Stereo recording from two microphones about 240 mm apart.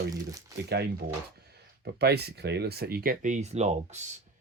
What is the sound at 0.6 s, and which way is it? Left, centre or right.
Speech, right.